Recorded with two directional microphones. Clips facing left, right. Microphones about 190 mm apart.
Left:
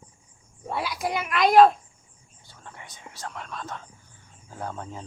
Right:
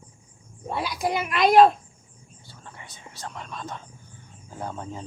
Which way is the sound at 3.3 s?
Centre (ahead or behind).